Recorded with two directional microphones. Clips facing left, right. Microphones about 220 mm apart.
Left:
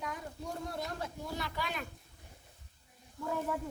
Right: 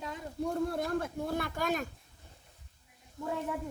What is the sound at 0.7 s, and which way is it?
Speech, 55° right (ahead or behind).